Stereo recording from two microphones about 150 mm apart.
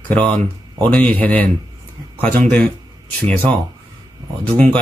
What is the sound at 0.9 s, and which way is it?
Speech, 10° left (ahead or behind).